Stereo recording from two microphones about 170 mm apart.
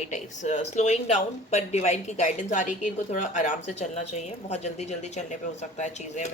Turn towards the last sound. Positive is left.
turn(degrees=45)  # may be behind; listen again after turning